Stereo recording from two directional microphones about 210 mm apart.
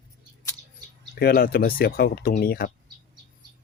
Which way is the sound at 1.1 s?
45° left (ahead or behind).